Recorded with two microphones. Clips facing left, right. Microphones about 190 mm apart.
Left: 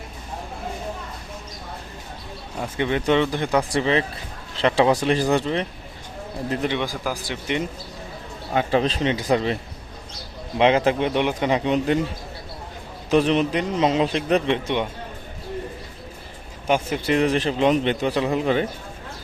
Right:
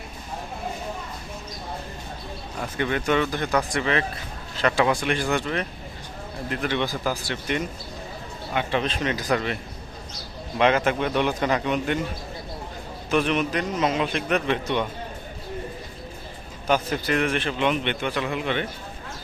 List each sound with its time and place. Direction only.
2.6 s a man's voice: 20° left (ahead or behind)
3.7 s a man's voice: 30° left (ahead or behind)
6.7 s speech: 10° left (ahead or behind)
8.5 s a man's voice: 35° left (ahead or behind)
10.6 s a man's voice: 25° left (ahead or behind)
13.1 s a man's voice: 35° left (ahead or behind)
17.1 s a man's voice: 35° left (ahead or behind)